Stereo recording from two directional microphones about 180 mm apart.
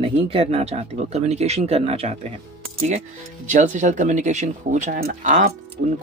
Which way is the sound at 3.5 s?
40° right (ahead or behind).